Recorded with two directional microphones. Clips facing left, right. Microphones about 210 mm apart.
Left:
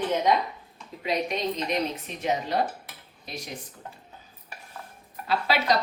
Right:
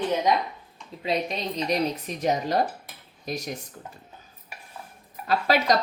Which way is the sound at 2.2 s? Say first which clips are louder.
Right 2 dB; 40° right (ahead or behind).